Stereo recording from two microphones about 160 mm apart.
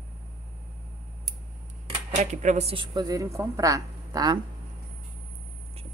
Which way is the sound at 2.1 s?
50° right (ahead or behind).